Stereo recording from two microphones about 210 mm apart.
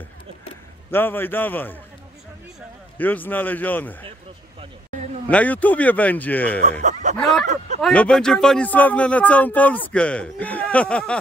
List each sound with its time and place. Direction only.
0.9 s speech: 10° left (ahead or behind)
3.0 s speech: 10° left (ahead or behind)
5.3 s speech: 5° left (ahead or behind)
6.8 s chuckle: 35° right (ahead or behind)
7.8 s speech: 5° left (ahead or behind)